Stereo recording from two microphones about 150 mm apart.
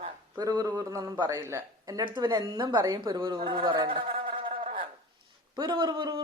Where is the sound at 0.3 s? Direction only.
25° right (ahead or behind).